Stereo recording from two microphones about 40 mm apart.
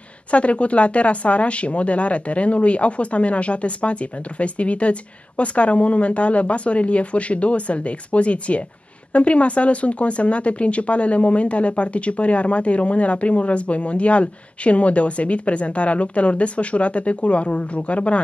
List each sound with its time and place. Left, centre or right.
0.3 s speech: left